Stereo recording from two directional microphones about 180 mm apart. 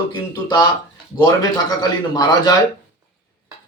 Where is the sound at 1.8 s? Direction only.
20° left (ahead or behind).